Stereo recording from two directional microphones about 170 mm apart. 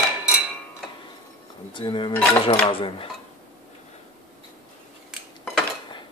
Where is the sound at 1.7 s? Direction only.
30° left (ahead or behind).